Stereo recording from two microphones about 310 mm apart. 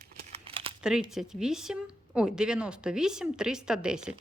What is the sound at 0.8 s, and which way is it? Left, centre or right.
Speech, centre.